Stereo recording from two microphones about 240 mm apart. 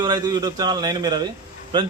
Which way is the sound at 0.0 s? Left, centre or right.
Centre.